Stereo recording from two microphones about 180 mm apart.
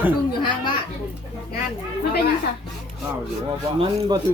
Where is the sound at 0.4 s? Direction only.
25° left (ahead or behind).